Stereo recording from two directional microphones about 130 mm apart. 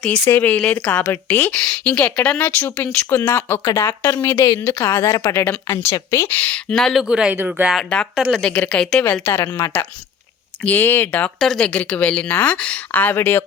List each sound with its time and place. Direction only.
0.0 s a woman's voice: 15° left (ahead or behind)
6.2 s speech: 10° left (ahead or behind); by 7.8 s 10° right (ahead or behind)
7.8 s speech: 5° left (ahead or behind)
9.2 s a woman's voice: 20° left (ahead or behind)